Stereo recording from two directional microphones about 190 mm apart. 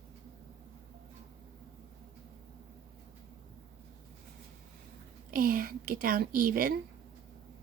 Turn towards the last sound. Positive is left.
turn(degrees=-50)  # may be behind; listen again after turning